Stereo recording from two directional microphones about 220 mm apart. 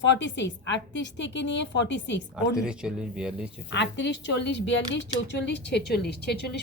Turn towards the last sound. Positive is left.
turn(degrees=50)  # may be behind; listen again after turning